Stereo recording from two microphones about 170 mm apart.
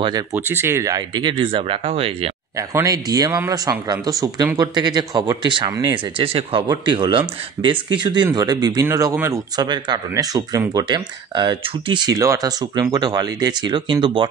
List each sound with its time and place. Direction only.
0.3 s speech: 15° right (ahead or behind); by 2.3 s 35° right (ahead or behind)
2.5 s speech: 20° right (ahead or behind)
6.1 s speech: 30° right (ahead or behind)